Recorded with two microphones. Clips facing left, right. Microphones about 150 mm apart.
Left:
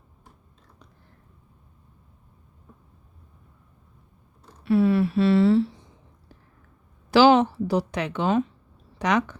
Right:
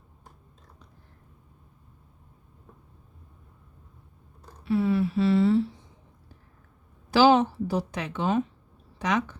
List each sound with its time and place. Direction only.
4.6 s speech: 70° left (ahead or behind); by 5.6 s 90° left
7.1 s a woman's voice: 80° left